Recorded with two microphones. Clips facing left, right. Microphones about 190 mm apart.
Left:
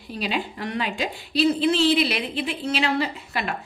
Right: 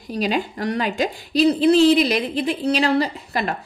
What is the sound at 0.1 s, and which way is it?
A woman's voice, 40° right (ahead or behind).